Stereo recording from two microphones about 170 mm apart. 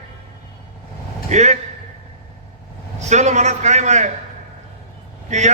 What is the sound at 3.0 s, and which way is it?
A man's voice, 45° right (ahead or behind).